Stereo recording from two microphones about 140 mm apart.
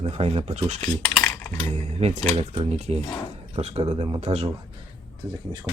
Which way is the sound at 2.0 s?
50° right (ahead or behind).